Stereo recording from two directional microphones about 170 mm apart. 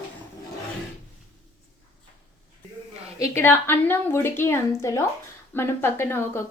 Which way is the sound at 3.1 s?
20° left (ahead or behind).